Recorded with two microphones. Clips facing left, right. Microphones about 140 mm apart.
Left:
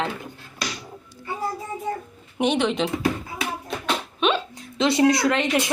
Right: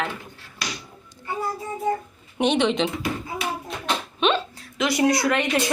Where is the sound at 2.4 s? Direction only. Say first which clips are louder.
Right 1 dB; 5° left (ahead or behind).